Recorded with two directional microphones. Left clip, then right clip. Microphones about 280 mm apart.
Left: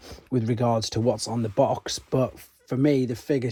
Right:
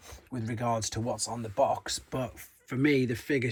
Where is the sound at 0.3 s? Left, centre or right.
Left.